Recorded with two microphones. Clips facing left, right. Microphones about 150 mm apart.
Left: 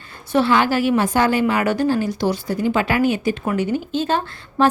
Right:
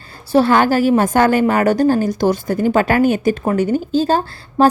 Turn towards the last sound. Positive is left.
turn(degrees=-40)  # may be behind; listen again after turning